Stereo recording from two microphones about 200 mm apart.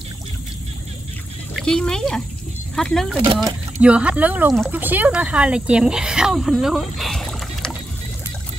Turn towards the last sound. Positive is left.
turn(degrees=5)  # may be behind; listen again after turning